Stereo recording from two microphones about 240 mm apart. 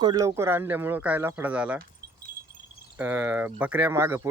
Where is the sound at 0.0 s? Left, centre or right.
Centre.